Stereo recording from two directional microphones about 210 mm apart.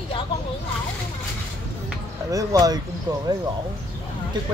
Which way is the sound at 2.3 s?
15° right (ahead or behind).